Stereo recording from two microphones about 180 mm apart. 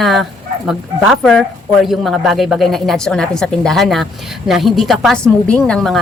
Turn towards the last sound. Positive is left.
turn(degrees=5)  # may be behind; listen again after turning